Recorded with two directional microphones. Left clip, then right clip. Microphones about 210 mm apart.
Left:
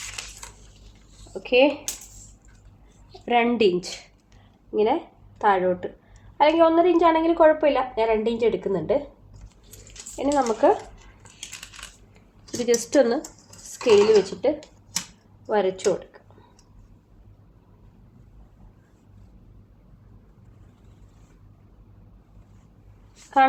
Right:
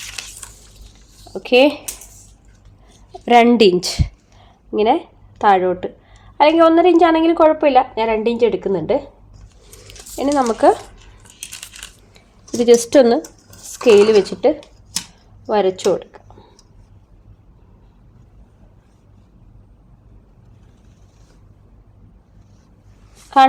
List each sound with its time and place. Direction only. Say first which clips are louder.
1.3 s a woman's voice: right 6 dB; 50° right (ahead or behind)
3.2 s a woman's voice: right 9 dB; 50° right (ahead or behind)
9.8 s a sound: right 6 dB; 50° right (ahead or behind)
10.9 s coin: right 4 dB; 25° right (ahead or behind)
12.1 s a sound: right 10 dB; 45° right (ahead or behind)
13.8 s a woman's voice: right 6 dB; 40° right (ahead or behind)